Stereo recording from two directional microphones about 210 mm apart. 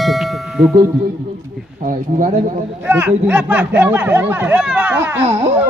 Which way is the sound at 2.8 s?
10° right (ahead or behind).